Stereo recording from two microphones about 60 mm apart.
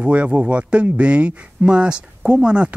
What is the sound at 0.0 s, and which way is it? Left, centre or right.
Speech, right.